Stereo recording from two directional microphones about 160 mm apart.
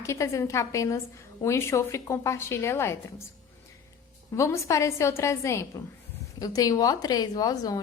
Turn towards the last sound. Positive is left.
turn(degrees=25)  # may be behind; listen again after turning